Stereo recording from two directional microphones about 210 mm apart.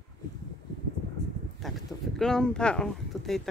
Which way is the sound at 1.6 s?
Centre (ahead or behind).